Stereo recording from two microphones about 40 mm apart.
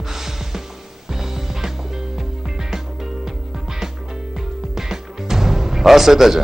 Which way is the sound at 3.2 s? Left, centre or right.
Centre.